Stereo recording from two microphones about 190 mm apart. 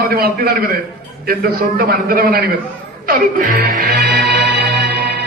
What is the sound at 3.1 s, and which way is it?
Music, 50° right (ahead or behind).